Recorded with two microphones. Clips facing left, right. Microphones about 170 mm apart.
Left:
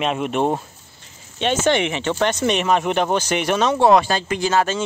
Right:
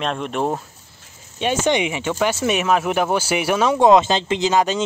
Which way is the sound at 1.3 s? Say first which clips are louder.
Left 1 dB; 10° right (ahead or behind).